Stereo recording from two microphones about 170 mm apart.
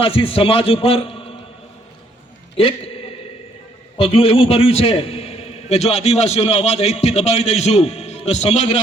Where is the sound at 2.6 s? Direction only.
35° left (ahead or behind).